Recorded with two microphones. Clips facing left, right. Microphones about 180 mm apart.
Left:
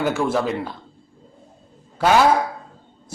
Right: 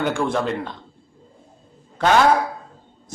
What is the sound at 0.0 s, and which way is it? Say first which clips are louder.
Speech: left 1 dB; 5° left (ahead or behind).